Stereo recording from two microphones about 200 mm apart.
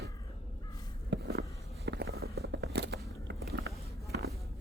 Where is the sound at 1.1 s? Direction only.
55° right (ahead or behind).